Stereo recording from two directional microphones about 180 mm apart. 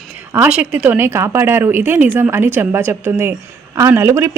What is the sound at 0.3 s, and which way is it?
Speech, 10° right (ahead or behind).